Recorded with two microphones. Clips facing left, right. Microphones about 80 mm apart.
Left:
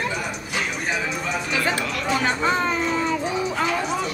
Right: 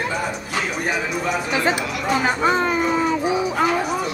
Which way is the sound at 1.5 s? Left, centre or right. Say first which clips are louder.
Right 1 dB; right.